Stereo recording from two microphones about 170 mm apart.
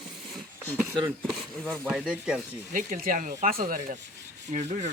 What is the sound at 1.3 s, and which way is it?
Speech, centre (ahead or behind).